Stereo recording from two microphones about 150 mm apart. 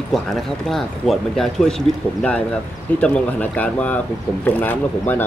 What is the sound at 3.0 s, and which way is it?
Speech, 10° left (ahead or behind).